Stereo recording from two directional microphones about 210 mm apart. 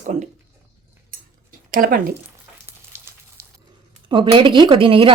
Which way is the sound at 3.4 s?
15° right (ahead or behind).